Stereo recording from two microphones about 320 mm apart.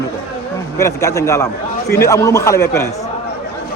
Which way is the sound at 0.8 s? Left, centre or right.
Centre.